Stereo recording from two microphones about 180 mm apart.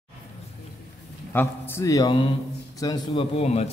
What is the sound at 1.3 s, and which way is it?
A man's voice, 10° left (ahead or behind).